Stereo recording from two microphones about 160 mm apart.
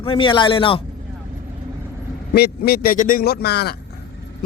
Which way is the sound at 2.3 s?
85° left.